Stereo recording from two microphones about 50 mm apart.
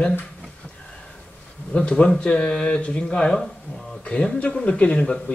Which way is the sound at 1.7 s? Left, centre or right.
Left.